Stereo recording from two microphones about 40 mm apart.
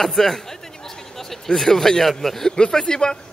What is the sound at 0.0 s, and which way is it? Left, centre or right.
A man's voice, centre.